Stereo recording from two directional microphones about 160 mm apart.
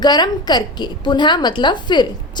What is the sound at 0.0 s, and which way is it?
A woman's voice, 25° left (ahead or behind).